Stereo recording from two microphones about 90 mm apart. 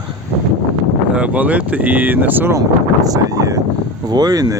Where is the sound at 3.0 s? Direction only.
40° right (ahead or behind).